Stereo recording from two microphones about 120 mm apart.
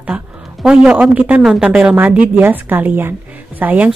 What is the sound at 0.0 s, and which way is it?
A woman's voice, 10° right (ahead or behind).